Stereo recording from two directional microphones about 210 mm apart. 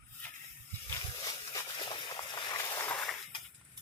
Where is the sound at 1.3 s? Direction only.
20° left (ahead or behind).